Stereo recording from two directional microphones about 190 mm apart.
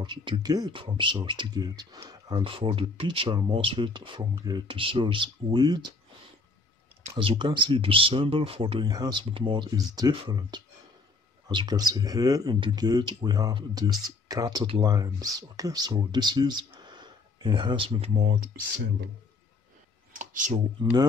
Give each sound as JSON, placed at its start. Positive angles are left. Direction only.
{"t": 0.0, "sound": "speech", "side_deg": -25}
{"t": 7.2, "sound": "speech", "side_deg": -25}
{"t": 20.1, "sound": "a sound", "side_deg": -40}